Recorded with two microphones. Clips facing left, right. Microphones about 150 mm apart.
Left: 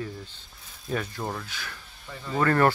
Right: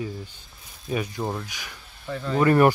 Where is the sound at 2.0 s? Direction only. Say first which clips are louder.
Right 6 dB; 75° right (ahead or behind).